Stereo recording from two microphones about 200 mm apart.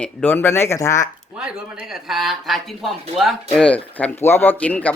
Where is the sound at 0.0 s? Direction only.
10° left (ahead or behind).